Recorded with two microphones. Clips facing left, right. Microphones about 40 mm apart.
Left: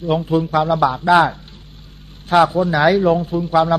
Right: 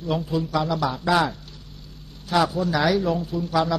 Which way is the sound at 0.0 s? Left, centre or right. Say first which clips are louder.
Left 7 dB; left.